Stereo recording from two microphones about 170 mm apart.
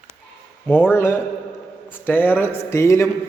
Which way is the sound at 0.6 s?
10° left (ahead or behind).